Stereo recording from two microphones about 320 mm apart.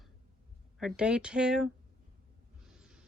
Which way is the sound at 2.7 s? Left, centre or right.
Centre.